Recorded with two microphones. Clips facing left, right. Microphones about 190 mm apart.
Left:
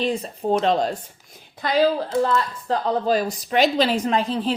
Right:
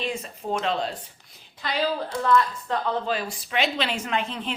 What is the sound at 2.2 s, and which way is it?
A woman's voice, 35° left (ahead or behind).